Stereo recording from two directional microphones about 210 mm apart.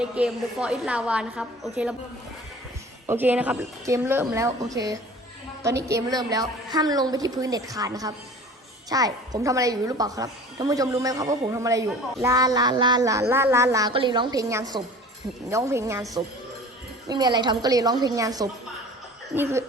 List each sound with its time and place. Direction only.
0.0 s a woman's voice: 5° right (ahead or behind)
3.1 s a woman's voice: 10° right (ahead or behind)
5.6 s a woman's voice: 15° right (ahead or behind)